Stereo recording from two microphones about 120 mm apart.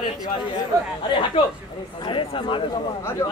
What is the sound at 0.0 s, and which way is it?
Chatter, 40° left (ahead or behind).